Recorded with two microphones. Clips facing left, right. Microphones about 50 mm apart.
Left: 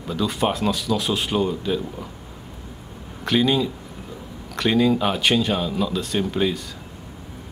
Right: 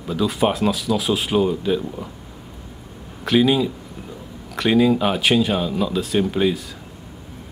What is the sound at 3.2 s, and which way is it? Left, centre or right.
Speech, centre.